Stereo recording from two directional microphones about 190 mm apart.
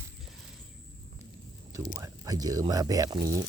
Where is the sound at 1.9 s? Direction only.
20° right (ahead or behind).